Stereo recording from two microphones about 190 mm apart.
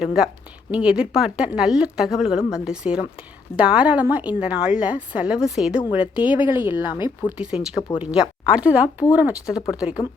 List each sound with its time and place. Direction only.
0.0 s a woman's voice: 5° right (ahead or behind)
6.9 s speech: 25° left (ahead or behind)
7.3 s a woman's voice: 5° right (ahead or behind)